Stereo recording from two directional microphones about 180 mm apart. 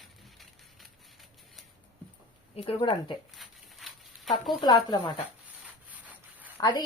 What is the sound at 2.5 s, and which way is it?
Speech, 30° left (ahead or behind).